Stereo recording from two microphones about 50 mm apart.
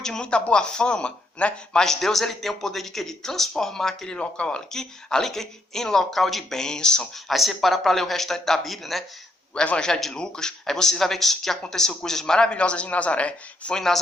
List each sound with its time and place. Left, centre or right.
0.0 s a man's voice: centre
1.8 s a man's voice: centre
4.7 s a man's voice: centre
7.3 s a man's voice: centre
12.5 s a man's voice: left
13.7 s a man's voice: centre